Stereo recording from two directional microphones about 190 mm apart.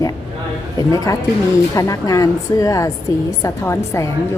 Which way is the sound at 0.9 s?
20° left (ahead or behind).